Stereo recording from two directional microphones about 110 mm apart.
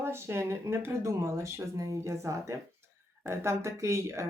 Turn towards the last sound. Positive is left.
turn(degrees=-25)  # may be behind; listen again after turning